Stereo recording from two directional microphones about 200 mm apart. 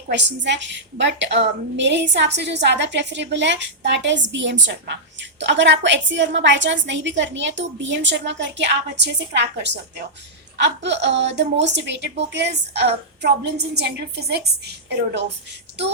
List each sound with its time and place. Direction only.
0.1 s a woman's voice: 60° right (ahead or behind)